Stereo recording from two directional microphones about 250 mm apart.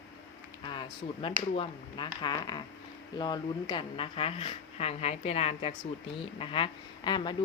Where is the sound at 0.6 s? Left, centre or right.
Centre.